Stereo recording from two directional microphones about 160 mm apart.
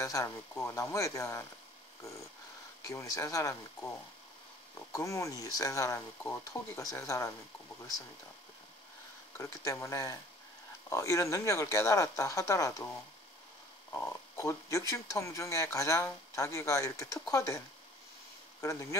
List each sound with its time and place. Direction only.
0.0 s speech: 20° left (ahead or behind)
2.8 s speech: 20° left (ahead or behind)
9.4 s speech: 20° left (ahead or behind)
13.9 s speech: 15° left (ahead or behind)
18.6 s speech: 20° left (ahead or behind)